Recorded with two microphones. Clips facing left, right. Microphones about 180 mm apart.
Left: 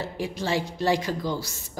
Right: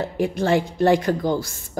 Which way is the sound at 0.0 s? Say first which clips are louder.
Right 7 dB; 55° right (ahead or behind).